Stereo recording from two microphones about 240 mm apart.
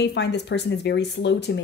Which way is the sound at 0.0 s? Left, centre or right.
Left.